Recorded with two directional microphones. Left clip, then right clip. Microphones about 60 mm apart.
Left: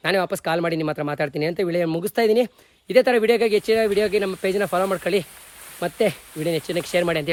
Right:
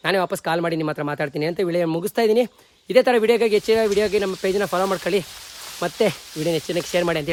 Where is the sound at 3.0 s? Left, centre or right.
Right.